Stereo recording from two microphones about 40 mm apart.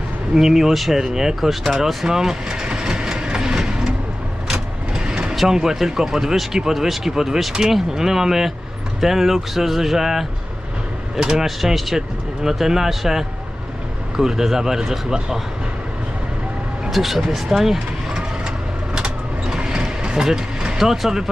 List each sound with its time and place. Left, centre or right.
0.3 s speech: centre
5.0 s vehicle: centre
5.3 s vehicle: centre
5.5 s speech: centre
11.4 s speech: centre
16.9 s speech: centre
18.9 s vehicle: right
20.2 s speech: centre